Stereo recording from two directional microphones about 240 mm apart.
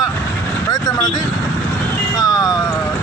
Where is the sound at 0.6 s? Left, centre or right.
Centre.